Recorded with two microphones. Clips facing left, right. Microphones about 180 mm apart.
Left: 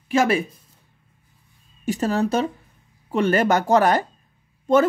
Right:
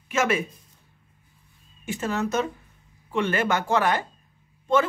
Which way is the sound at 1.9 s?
35° left (ahead or behind).